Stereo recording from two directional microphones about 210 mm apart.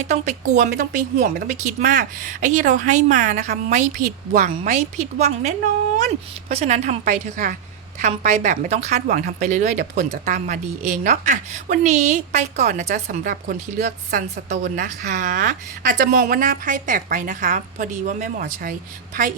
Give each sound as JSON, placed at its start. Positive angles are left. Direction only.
{"t": 0.0, "sound": "a woman's voice", "side_deg": -30}